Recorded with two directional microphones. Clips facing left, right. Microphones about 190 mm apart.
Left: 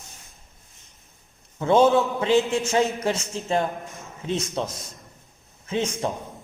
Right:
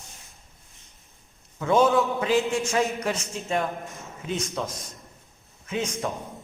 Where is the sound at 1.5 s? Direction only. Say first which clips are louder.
Left 3 dB; 30° left (ahead or behind).